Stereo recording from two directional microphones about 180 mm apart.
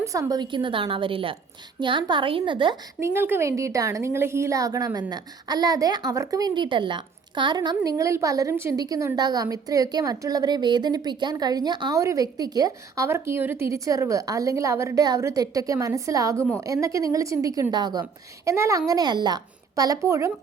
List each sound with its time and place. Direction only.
0.0 s a woman's voice: 20° right (ahead or behind)
3.0 s a woman's voice: 15° right (ahead or behind)